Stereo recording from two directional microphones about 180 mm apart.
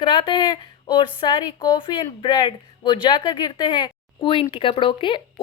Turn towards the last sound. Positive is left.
turn(degrees=30)  # may be behind; listen again after turning